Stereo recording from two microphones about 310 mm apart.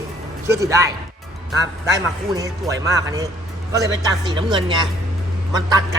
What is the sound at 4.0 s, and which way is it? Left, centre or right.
Speech, centre.